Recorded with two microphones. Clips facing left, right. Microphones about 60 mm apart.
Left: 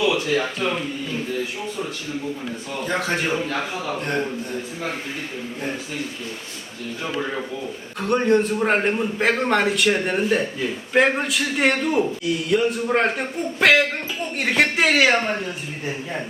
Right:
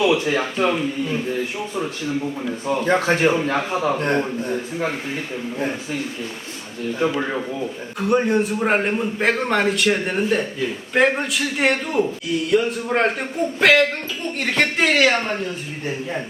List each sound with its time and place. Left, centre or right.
0.0 s speech: right
2.6 s a man's voice: right
7.9 s a man's voice: centre